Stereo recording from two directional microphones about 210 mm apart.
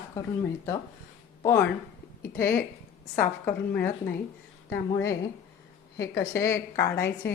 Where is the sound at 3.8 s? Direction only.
50° left (ahead or behind).